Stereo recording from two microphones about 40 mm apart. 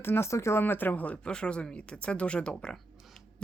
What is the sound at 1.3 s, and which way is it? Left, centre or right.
Speech, left.